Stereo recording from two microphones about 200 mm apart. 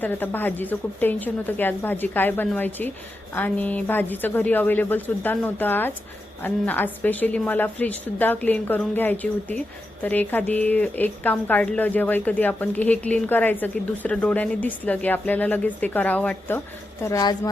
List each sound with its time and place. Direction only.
0.0 s a woman's voice: 10° left (ahead or behind)